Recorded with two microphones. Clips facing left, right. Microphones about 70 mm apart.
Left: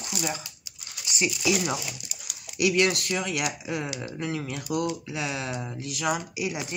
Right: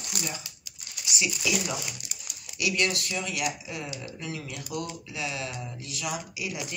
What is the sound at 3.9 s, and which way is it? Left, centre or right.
Speech, left.